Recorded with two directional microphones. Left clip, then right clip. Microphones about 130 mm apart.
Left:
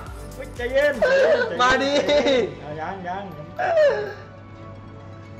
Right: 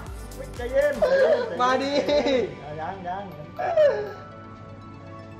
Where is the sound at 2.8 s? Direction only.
15° left (ahead or behind).